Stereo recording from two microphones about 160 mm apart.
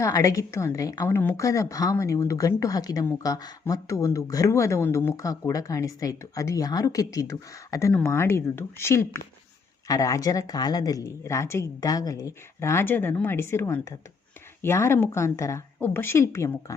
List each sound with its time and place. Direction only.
0.0 s a woman's voice: 20° left (ahead or behind)